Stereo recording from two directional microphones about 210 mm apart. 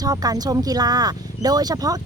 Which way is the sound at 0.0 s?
15° right (ahead or behind).